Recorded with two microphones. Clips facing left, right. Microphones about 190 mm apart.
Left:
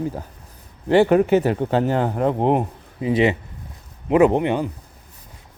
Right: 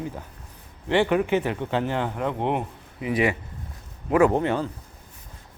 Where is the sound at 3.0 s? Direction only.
25° left (ahead or behind).